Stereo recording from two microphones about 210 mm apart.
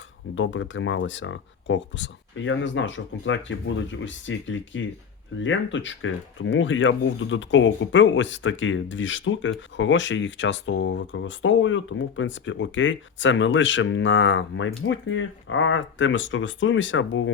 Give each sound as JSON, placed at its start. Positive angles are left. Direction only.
{"t": 0.3, "sound": "speech", "side_deg": 65}